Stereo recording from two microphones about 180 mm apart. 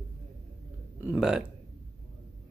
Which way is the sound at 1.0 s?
5° right (ahead or behind).